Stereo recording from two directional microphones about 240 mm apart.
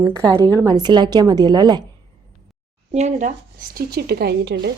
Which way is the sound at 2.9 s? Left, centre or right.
Right.